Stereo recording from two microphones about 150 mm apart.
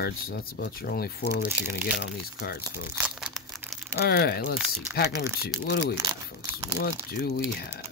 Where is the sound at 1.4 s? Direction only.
10° right (ahead or behind).